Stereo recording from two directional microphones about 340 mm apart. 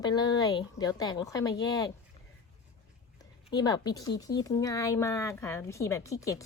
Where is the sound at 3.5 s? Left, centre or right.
Centre.